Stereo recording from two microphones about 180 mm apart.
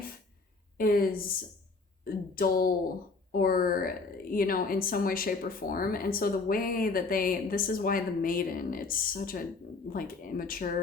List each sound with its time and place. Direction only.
0.8 s a woman's voice: 55° left (ahead or behind)